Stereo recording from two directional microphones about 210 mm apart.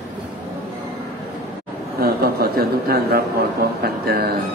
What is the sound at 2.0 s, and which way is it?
A man's voice, 45° right (ahead or behind).